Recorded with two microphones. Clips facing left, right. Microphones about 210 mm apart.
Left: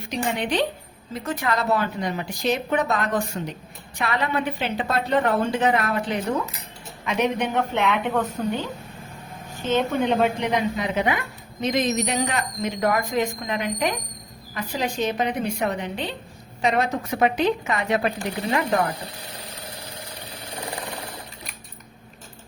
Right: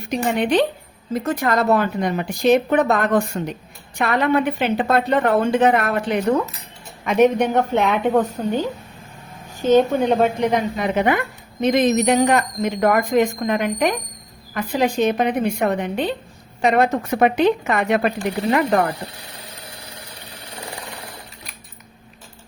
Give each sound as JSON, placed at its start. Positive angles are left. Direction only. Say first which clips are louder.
{"t": 0.1, "sound": "a woman's voice", "louder": "right 6 dB", "side_deg": -50}
{"t": 9.6, "sound": "a woman's voice", "louder": "right 7 dB", "side_deg": -40}